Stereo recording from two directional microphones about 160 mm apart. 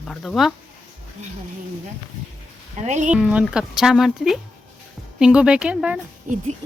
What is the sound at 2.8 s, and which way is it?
Speech, 50° right (ahead or behind).